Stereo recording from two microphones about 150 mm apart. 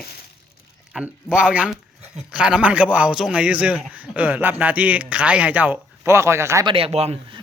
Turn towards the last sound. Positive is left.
turn(degrees=-45)  # may be behind; listen again after turning